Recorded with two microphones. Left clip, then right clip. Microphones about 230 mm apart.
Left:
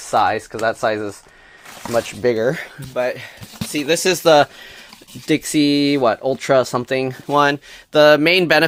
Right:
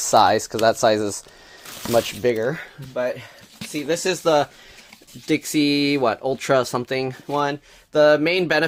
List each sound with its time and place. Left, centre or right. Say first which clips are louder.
0.0 s speech: right 1 dB; right
2.4 s speech: left 5 dB; left
5.2 s speech: left 3 dB; left
7.3 s speech: left 8 dB; left